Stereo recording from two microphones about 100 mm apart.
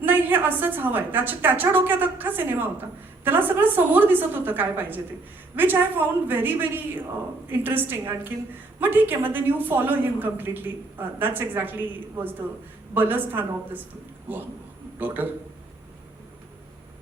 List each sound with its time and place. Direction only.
0.0 s a woman's voice: 20° right (ahead or behind)
12.9 s a woman's voice: 20° right (ahead or behind)
14.9 s a man's voice: 20° right (ahead or behind)